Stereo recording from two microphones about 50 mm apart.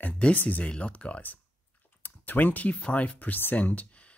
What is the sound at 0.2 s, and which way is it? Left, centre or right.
Speech, left.